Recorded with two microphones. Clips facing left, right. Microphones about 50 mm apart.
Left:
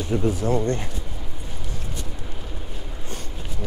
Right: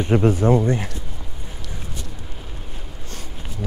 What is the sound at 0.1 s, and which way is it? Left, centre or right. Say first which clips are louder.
Speech: right 6 dB; right.